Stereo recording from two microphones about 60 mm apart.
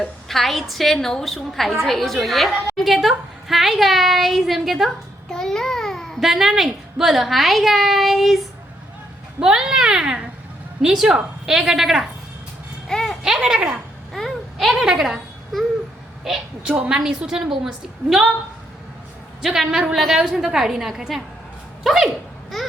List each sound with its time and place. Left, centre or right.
0.0 s a woman's voice: centre
5.3 s babbling: centre
6.1 s a woman's voice: centre
12.9 s a sound: centre
13.2 s speech: centre
14.1 s a sound: centre
16.3 s a woman's voice: centre
16.6 s a woman's voice: centre
19.4 s a man's voice: centre
22.5 s a sound: centre